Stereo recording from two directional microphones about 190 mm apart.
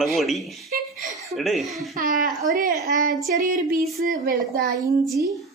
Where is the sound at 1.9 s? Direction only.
45° right (ahead or behind).